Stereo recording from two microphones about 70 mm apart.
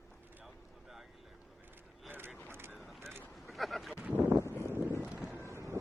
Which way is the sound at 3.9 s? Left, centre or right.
Right.